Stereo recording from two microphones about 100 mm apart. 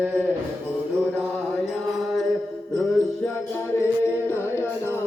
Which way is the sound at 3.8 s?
25° left (ahead or behind).